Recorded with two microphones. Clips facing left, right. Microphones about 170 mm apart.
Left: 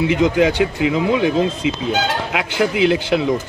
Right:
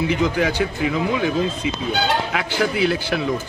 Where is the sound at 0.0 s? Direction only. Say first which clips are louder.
Left 5 dB; 15° left (ahead or behind).